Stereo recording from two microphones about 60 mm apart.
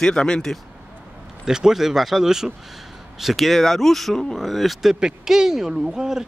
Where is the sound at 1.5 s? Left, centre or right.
Centre.